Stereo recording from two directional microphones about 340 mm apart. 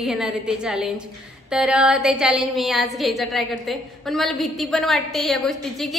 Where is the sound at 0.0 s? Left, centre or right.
Centre.